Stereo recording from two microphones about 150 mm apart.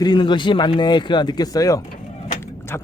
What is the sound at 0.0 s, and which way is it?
Speech, 30° left (ahead or behind).